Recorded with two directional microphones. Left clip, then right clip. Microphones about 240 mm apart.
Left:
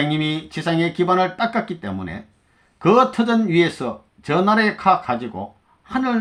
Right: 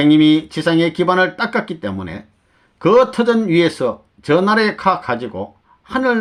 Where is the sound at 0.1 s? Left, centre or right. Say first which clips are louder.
Right 11 dB; right.